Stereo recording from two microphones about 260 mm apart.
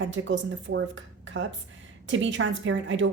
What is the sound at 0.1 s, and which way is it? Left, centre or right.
A woman's voice, right.